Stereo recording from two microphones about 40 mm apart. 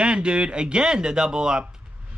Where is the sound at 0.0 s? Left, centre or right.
Right.